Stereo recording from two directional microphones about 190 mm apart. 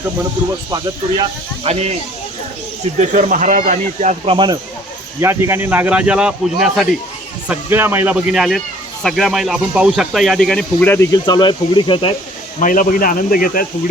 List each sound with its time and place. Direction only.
0.7 s speech: 25° right (ahead or behind)
3.0 s speech: 40° right (ahead or behind)
5.2 s speech: 15° right (ahead or behind); by 12.1 s 25° left (ahead or behind)
12.5 s a man's voice: 40° left (ahead or behind)